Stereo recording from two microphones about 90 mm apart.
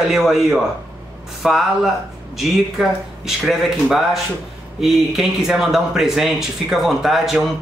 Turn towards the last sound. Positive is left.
turn(degrees=-5)  # may be behind; listen again after turning